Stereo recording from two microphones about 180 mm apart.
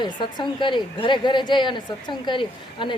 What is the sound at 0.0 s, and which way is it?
Speech, 25° left (ahead or behind).